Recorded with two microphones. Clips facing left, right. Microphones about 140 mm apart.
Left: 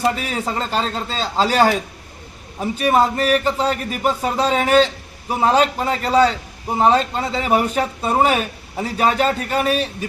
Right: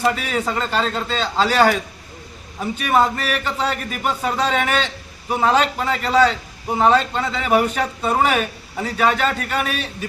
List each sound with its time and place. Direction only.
0.0 s a man's voice: 35° left (ahead or behind)